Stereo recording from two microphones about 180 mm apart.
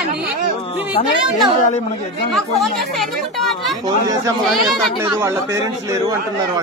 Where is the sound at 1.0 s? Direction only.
35° left (ahead or behind).